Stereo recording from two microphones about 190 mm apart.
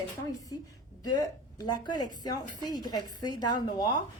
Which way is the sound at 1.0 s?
20° left (ahead or behind).